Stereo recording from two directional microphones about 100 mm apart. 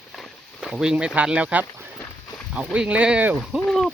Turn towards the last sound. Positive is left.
turn(degrees=5)  # may be behind; listen again after turning